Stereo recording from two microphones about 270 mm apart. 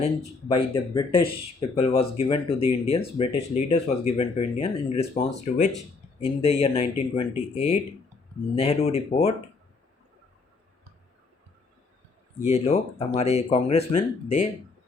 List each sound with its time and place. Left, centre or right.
0.0 s speech: left
12.4 s speech: left